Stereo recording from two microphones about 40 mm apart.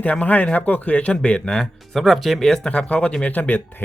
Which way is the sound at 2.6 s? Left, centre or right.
Left.